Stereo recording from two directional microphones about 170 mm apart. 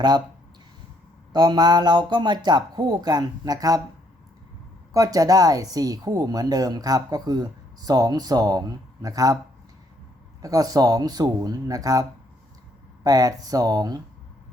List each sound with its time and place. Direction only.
1.3 s speech: 25° right (ahead or behind)
4.9 s speech: 20° right (ahead or behind)
10.4 s speech: 20° right (ahead or behind)
13.1 s speech: 20° right (ahead or behind)